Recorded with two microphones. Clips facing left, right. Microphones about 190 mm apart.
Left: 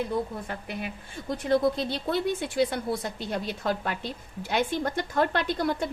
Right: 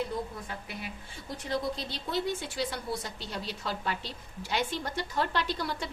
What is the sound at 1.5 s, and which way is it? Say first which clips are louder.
A woman's voice: left 9 dB; 55° left (ahead or behind).